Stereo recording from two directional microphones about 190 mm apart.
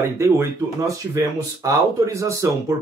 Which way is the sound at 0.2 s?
15° right (ahead or behind).